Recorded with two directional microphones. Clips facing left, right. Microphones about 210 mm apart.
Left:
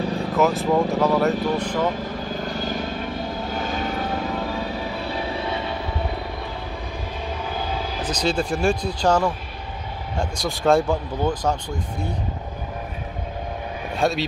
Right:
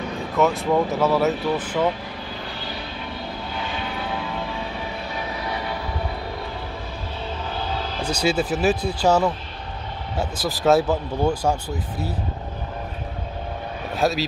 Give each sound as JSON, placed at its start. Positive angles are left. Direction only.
{"t": 0.4, "sound": "speech", "side_deg": 0}
{"t": 2.2, "sound": "vehicle", "side_deg": 45}
{"t": 5.4, "sound": "vehicle", "side_deg": 25}
{"t": 7.5, "sound": "vehicle", "side_deg": 10}
{"t": 8.0, "sound": "speech", "side_deg": -10}
{"t": 13.9, "sound": "speech", "side_deg": 0}